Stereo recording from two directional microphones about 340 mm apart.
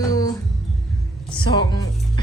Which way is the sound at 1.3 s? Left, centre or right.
Centre.